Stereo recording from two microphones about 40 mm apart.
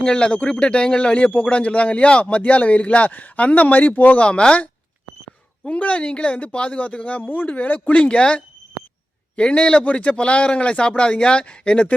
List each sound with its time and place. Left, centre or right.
0.0 s speech: left
2.4 s speech: left
4.2 s speech: left
5.6 s speech: left